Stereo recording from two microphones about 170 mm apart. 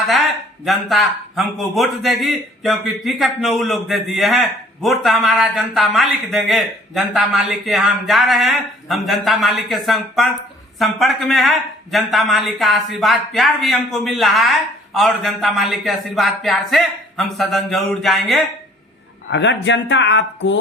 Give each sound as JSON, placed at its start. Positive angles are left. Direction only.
{"t": 0.6, "sound": "a man's voice", "side_deg": 0}
{"t": 19.3, "sound": "speech", "side_deg": 90}